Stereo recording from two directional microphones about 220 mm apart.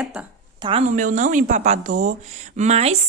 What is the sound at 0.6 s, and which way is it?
Speech, 25° right (ahead or behind).